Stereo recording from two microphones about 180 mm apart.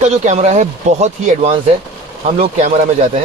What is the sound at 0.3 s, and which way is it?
Speech, 40° right (ahead or behind).